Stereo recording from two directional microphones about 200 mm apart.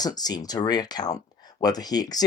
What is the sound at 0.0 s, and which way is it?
Speech, 20° left (ahead or behind).